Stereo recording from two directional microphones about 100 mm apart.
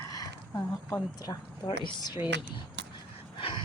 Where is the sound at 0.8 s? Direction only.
35° left (ahead or behind).